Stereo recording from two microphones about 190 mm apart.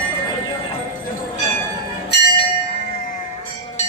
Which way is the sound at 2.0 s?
60° left (ahead or behind).